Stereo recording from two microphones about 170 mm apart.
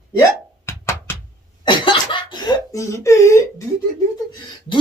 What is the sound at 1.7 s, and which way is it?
Speech, 30° left (ahead or behind).